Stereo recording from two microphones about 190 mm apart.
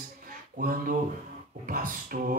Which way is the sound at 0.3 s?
50° right (ahead or behind).